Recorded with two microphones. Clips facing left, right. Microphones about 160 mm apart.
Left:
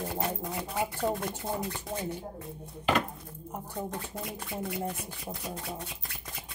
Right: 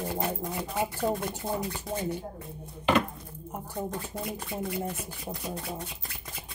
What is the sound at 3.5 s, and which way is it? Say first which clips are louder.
Speech: right 2 dB; 5° right (ahead or behind).